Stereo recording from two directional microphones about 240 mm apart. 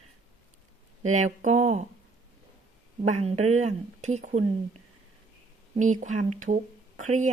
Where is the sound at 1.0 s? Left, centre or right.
Right.